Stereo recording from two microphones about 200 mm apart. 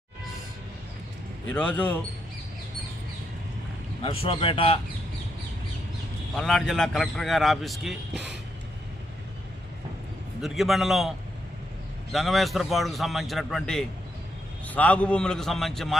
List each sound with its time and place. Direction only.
1.5 s speech: 5° left (ahead or behind)
4.0 s speech: 25° left (ahead or behind)
6.3 s a man's voice: centre (ahead or behind)
10.4 s a man's voice: centre (ahead or behind)
12.1 s a man's voice: centre (ahead or behind)